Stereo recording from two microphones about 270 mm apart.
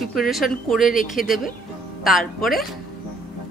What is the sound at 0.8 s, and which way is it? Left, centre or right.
Speech, left.